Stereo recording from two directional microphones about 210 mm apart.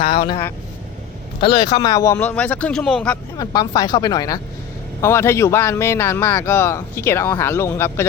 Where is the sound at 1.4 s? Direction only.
25° left (ahead or behind); by 3.2 s 5° left (ahead or behind).